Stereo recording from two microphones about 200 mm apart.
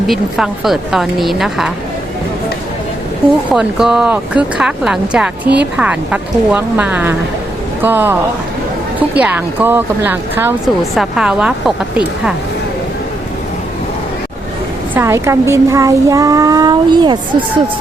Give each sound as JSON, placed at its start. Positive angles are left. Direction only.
{"t": 0.1, "sound": "speech", "side_deg": 0}
{"t": 3.5, "sound": "speech", "side_deg": -5}
{"t": 14.9, "sound": "speech", "side_deg": -15}